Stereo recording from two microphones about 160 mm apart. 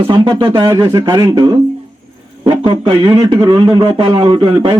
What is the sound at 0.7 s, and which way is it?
Speech, 20° right (ahead or behind).